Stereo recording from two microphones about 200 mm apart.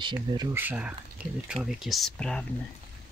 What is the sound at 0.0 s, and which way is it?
Speech, 20° right (ahead or behind).